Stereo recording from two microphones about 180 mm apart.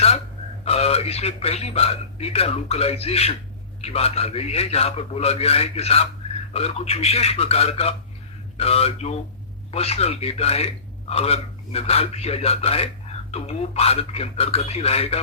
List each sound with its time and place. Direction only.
0.6 s a man's voice: 35° left (ahead or behind)